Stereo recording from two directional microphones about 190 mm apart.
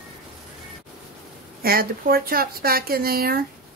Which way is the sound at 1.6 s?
50° right (ahead or behind).